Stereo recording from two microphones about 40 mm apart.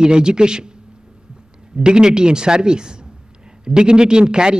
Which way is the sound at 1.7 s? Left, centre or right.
Right.